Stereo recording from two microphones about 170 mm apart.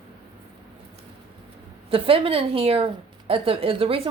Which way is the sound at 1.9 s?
30° right (ahead or behind).